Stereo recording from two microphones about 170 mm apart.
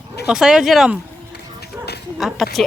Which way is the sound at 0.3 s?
5° right (ahead or behind).